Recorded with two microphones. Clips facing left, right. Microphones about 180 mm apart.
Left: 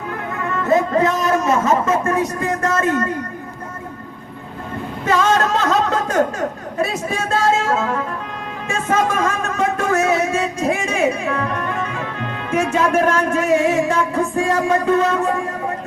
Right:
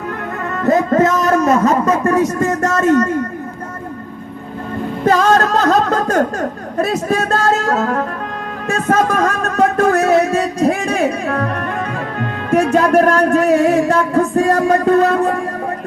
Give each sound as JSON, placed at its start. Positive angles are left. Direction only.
{"t": 0.4, "sound": "a man's voice", "side_deg": -40}
{"t": 5.0, "sound": "speech", "side_deg": -40}